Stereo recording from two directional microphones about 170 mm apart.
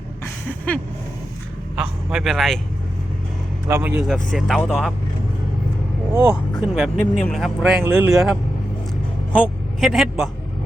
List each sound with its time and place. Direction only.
1.7 s speech: 5° right (ahead or behind)
3.7 s speech: 15° right (ahead or behind)
3.9 s speech: centre (ahead or behind)
6.1 s speech: 10° right (ahead or behind)
6.9 s speech: 5° left (ahead or behind); by 8.2 s 10° right (ahead or behind)
9.4 s speech: centre (ahead or behind)